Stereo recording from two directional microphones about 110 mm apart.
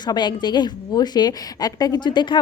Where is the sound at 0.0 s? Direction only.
40° left (ahead or behind).